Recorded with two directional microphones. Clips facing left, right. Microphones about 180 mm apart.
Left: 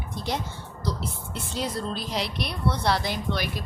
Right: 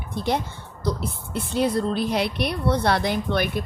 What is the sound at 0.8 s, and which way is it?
A woman's voice, 55° right (ahead or behind).